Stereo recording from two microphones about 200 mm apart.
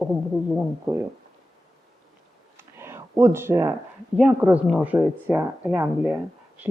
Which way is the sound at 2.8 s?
15° right (ahead or behind).